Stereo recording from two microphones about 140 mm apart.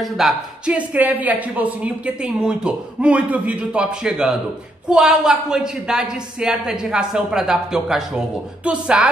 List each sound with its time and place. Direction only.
0.0 s a woman's voice: 5° right (ahead or behind)